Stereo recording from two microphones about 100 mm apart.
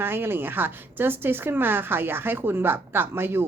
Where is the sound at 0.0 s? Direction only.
20° right (ahead or behind).